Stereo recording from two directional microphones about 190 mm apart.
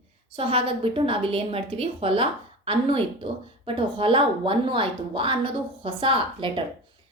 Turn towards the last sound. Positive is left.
turn(degrees=-25)  # may be behind; listen again after turning